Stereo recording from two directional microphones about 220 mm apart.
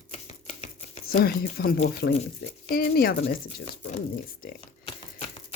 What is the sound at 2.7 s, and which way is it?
Speech, 45° left (ahead or behind).